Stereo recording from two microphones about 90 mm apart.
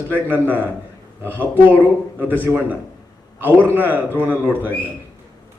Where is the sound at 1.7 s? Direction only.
20° right (ahead or behind).